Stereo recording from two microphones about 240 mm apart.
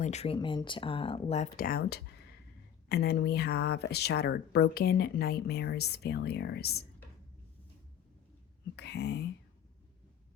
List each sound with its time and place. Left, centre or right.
0.0 s speech: left
8.7 s speech: left